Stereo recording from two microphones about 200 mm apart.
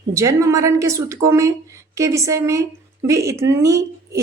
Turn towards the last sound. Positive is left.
turn(degrees=-15)  # may be behind; listen again after turning